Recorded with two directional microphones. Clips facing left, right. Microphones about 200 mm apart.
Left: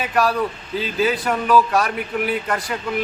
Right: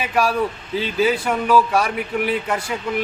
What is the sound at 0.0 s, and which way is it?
A man's voice, 5° right (ahead or behind).